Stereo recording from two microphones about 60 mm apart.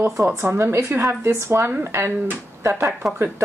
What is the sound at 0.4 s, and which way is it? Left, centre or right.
Speech, right.